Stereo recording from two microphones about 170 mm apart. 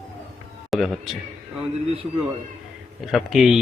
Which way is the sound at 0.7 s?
Centre (ahead or behind).